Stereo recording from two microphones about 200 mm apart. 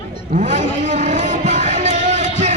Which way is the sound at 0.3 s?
40° right (ahead or behind).